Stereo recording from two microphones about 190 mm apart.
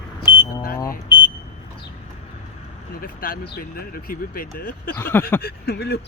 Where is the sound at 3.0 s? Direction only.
50° left (ahead or behind).